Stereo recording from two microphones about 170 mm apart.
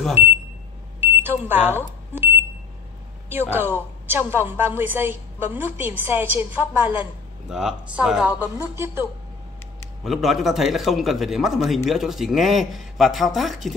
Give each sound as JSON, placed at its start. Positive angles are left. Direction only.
{"t": 0.1, "sound": "a woman's voice", "side_deg": -10}
{"t": 1.0, "sound": "smoke detector", "side_deg": -10}
{"t": 3.3, "sound": "a woman's voice", "side_deg": -10}
{"t": 8.5, "sound": "a woman's voice", "side_deg": -15}
{"t": 10.0, "sound": "a man's voice", "side_deg": 0}